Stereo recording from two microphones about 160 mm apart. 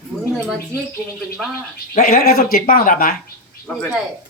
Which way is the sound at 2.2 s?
65° left (ahead or behind).